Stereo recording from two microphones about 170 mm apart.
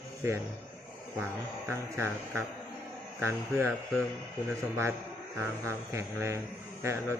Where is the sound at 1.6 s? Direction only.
15° right (ahead or behind).